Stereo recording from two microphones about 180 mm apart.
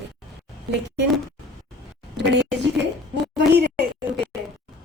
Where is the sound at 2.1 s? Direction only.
70° right (ahead or behind).